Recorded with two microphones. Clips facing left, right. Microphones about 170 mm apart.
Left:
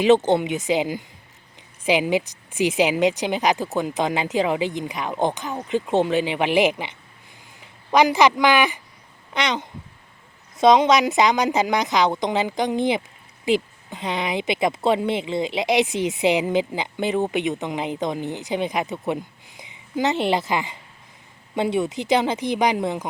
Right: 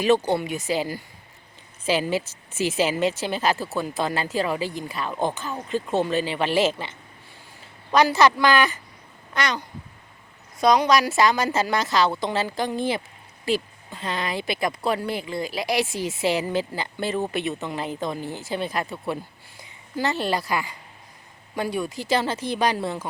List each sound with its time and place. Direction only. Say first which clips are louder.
0.0 s a man's voice: left 4 dB; 20° left (ahead or behind)